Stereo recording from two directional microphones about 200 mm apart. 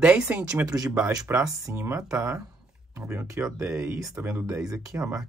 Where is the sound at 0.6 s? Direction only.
20° right (ahead or behind).